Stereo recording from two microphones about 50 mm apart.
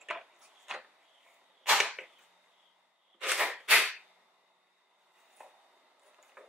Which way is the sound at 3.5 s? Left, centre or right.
Right.